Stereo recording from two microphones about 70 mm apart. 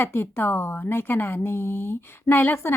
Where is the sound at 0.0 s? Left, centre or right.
Left.